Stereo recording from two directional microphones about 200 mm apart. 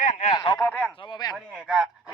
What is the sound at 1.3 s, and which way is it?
Speech, centre (ahead or behind).